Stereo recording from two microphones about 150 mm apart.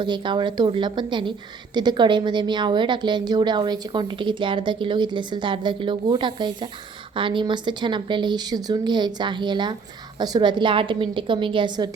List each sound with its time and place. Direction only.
0.0 s a woman's voice: 30° right (ahead or behind)